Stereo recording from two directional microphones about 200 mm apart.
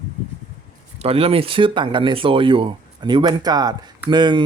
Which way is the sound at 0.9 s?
30° right (ahead or behind).